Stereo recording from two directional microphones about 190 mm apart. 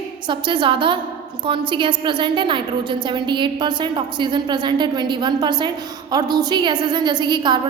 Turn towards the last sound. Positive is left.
turn(degrees=-25)  # may be behind; listen again after turning